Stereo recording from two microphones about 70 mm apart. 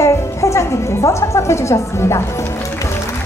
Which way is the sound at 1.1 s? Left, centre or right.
Left.